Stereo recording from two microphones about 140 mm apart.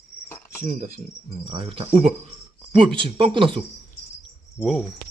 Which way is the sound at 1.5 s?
40° right (ahead or behind).